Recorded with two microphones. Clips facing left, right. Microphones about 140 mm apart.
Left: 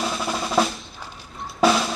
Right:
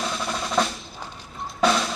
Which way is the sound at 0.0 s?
5° left (ahead or behind).